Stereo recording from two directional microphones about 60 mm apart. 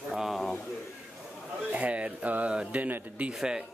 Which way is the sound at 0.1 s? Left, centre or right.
Centre.